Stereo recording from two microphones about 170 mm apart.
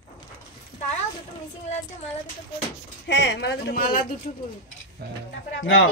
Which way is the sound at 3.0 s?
90° left.